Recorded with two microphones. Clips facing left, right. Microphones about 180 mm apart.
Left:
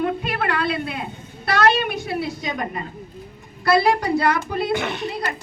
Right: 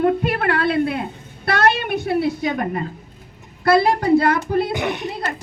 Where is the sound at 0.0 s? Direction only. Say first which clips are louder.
Right 5 dB; 55° right (ahead or behind).